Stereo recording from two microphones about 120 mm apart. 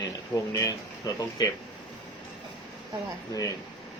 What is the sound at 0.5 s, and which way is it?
Speech, 25° left (ahead or behind).